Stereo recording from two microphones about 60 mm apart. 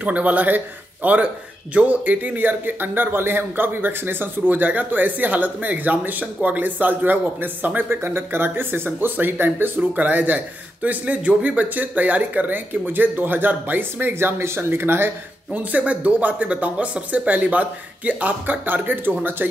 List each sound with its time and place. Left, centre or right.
0.0 s speech: right
15.5 s speech: right